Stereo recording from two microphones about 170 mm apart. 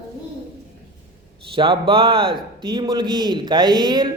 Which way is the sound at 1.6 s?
30° right (ahead or behind).